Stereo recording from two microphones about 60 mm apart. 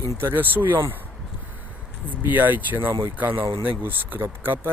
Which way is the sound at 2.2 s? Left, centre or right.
Right.